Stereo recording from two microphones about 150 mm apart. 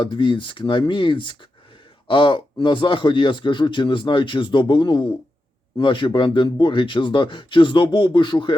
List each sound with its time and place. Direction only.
0.0 s speech: 30° left (ahead or behind)